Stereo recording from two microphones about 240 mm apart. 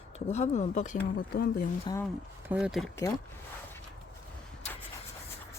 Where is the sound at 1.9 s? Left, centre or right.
Centre.